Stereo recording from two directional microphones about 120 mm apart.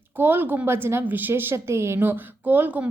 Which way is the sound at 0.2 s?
15° right (ahead or behind).